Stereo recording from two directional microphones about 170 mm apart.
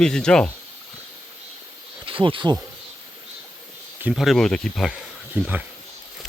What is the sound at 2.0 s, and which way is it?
Speech, 30° right (ahead or behind).